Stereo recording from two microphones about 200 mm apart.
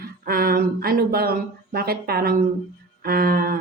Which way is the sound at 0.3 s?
50° right (ahead or behind).